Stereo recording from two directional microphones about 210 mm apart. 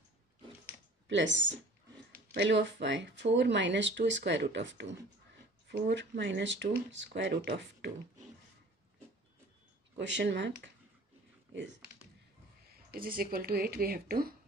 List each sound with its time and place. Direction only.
1.0 s speech: 60° right (ahead or behind)
9.9 s speech: 60° right (ahead or behind)
12.7 s speech: 45° right (ahead or behind)